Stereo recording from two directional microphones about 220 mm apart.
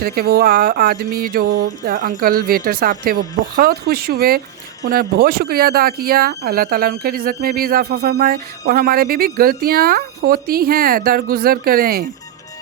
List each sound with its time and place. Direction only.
0.0 s speech: 45° right (ahead or behind)